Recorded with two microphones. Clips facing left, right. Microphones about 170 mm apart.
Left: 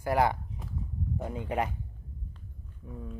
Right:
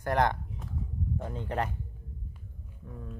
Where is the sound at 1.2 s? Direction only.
10° left (ahead or behind).